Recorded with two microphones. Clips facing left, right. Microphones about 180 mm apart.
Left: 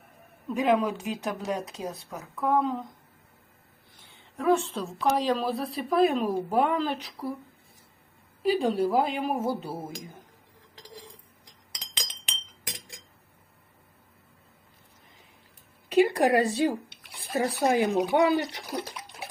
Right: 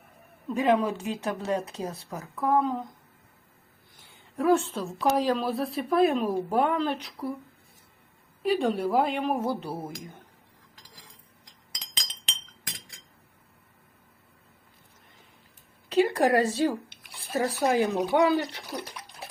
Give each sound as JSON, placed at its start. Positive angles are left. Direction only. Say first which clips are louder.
{"t": 0.4, "sound": "a woman's voice", "louder": "even", "side_deg": 0}
{"t": 4.4, "sound": "a woman's voice", "louder": "right 1 dB", "side_deg": -5}
{"t": 8.4, "sound": "a woman's voice", "louder": "left 1 dB", "side_deg": 0}
{"t": 15.9, "sound": "speech", "louder": "left 1 dB", "side_deg": 15}